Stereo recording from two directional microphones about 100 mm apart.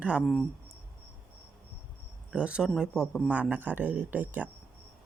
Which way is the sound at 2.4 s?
10° right (ahead or behind).